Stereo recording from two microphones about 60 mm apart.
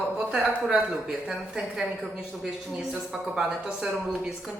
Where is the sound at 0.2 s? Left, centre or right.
Centre.